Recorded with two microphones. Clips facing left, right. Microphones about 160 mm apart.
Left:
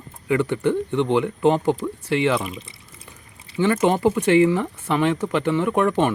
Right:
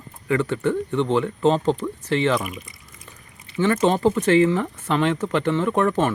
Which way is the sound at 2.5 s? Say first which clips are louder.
Left 1 dB; 30° left (ahead or behind).